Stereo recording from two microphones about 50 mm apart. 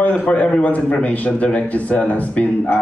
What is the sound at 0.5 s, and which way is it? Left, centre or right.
Speech, left.